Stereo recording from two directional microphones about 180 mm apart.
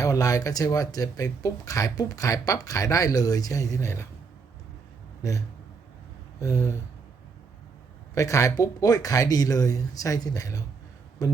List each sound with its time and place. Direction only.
0.0 s speech: 20° left (ahead or behind)
6.4 s a sound: 15° left (ahead or behind)
8.1 s speech: 15° left (ahead or behind)